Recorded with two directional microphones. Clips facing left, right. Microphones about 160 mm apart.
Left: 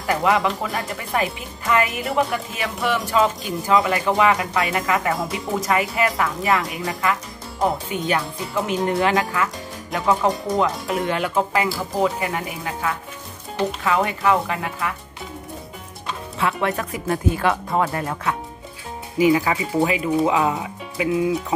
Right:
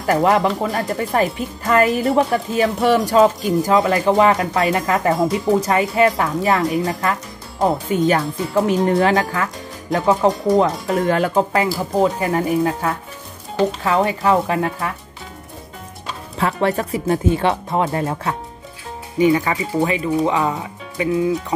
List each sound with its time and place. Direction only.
0.0 s speech: 40° right (ahead or behind)
8.1 s speech: 35° right (ahead or behind)
16.3 s speech: 35° right (ahead or behind)
19.1 s speech: 5° left (ahead or behind)